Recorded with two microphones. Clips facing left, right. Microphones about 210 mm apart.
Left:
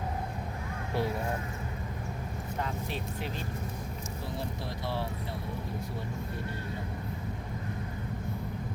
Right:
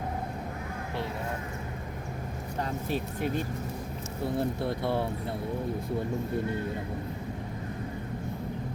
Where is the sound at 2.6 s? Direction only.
40° right (ahead or behind).